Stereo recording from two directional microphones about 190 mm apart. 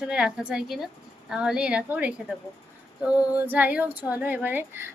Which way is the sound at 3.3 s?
10° right (ahead or behind).